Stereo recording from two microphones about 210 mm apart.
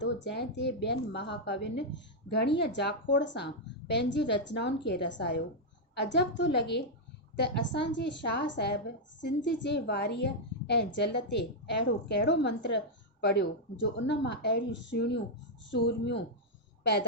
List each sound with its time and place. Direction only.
0.0 s a woman's voice: 55° left (ahead or behind)
13.9 s a woman's voice: 55° left (ahead or behind)